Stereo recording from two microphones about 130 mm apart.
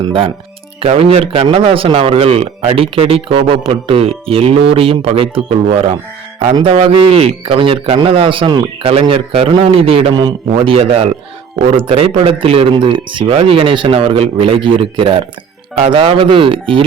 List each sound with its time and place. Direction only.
0.0 s a man's voice: 40° right (ahead or behind)